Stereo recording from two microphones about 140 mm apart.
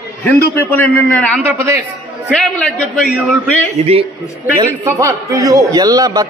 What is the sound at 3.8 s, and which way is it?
Speech, 50° right (ahead or behind).